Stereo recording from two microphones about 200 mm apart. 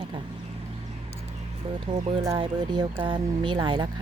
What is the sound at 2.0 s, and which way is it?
A woman's voice, 30° right (ahead or behind).